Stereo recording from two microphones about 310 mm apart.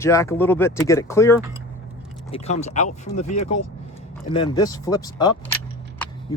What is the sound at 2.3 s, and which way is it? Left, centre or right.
Speech, left.